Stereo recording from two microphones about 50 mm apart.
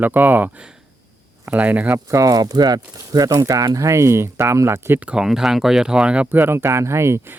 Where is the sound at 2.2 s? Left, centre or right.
Right.